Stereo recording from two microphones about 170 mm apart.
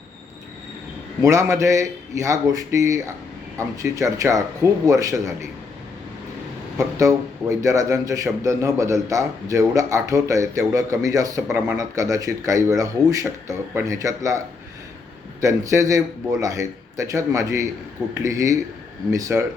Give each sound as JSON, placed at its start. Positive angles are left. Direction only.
{"t": 1.2, "sound": "a man's voice", "side_deg": -20}
{"t": 6.7, "sound": "a man's voice", "side_deg": -20}
{"t": 11.4, "sound": "speech", "side_deg": -10}
{"t": 11.8, "sound": "a man's voice", "side_deg": -20}
{"t": 15.4, "sound": "a man's voice", "side_deg": -20}